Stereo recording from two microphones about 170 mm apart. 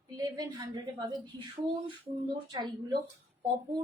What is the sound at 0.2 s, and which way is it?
A woman's voice, 25° right (ahead or behind).